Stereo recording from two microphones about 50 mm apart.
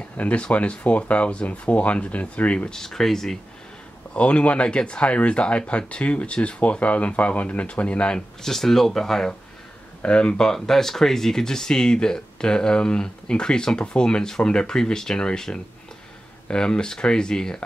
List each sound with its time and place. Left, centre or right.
0.2 s speech: left
2.7 s speech: centre
4.1 s speech: left; by 9.3 s centre
10.0 s speech: centre